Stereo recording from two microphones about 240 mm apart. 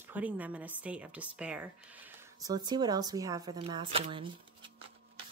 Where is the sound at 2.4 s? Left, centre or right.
Centre.